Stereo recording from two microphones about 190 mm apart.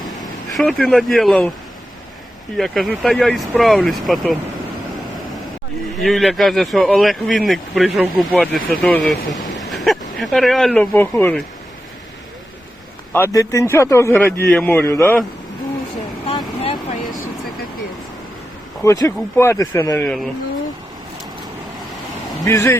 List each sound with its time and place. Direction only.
0.4 s speech: centre (ahead or behind)
2.6 s speech: centre (ahead or behind)
6.0 s speech: centre (ahead or behind)
13.1 s a man's voice: 15° left (ahead or behind)
16.2 s vehicle: 30° left (ahead or behind)
18.8 s a man's voice: 15° left (ahead or behind)
20.1 s speech: centre (ahead or behind)
22.4 s a man's voice: 15° left (ahead or behind)